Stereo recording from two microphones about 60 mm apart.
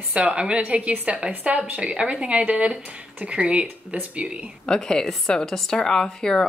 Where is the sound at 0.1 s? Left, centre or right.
Centre.